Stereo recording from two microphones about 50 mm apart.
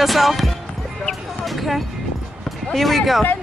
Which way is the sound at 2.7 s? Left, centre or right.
Centre.